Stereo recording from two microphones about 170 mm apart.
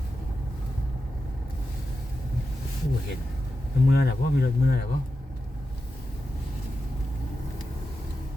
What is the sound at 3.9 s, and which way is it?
Speech, 70° left (ahead or behind).